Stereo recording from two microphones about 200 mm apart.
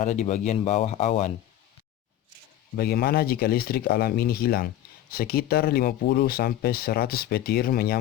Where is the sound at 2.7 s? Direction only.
50° left (ahead or behind).